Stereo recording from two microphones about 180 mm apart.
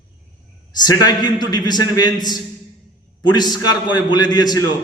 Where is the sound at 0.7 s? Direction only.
20° left (ahead or behind).